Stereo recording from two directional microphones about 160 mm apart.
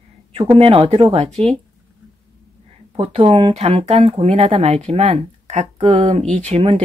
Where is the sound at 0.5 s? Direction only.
35° right (ahead or behind).